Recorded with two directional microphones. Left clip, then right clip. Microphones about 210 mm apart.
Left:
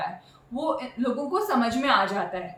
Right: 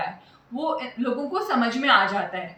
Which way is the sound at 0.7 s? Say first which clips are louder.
Right 1 dB; 20° left (ahead or behind).